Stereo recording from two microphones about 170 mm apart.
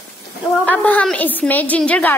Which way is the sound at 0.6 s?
5° left (ahead or behind).